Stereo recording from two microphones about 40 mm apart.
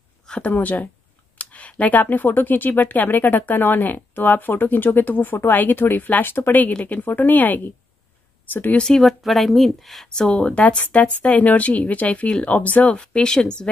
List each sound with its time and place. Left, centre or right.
0.5 s a woman's voice: left
6.8 s speech: left
8.5 s a woman's voice: left
9.0 s speech: centre
10.0 s speech: centre
10.3 s speech: left
12.9 s speech: left